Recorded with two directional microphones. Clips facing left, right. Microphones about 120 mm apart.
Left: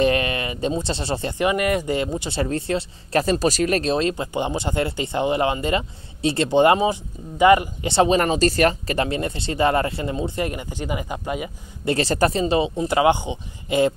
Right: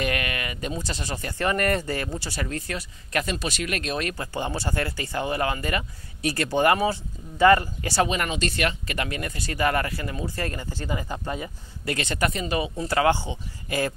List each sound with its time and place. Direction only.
0.0 s a sound: 30° left (ahead or behind)
1.4 s speech: 10° left (ahead or behind)
11.8 s speech: 30° left (ahead or behind)